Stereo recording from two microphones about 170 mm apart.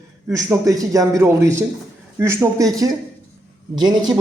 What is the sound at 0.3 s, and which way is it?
Speech, 20° right (ahead or behind).